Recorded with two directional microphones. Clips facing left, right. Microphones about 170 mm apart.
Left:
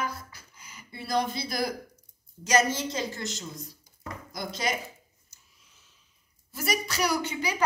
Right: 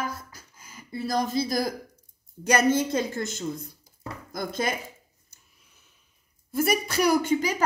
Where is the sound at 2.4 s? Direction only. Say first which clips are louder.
Right 3 dB; 60° right (ahead or behind).